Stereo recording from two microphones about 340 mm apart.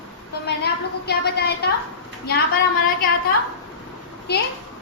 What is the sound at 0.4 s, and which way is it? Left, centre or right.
A woman's voice, left.